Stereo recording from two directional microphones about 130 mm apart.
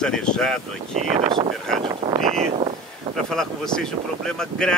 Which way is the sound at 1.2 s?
40° right (ahead or behind).